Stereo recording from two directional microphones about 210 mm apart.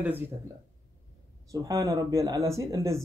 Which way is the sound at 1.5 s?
15° right (ahead or behind).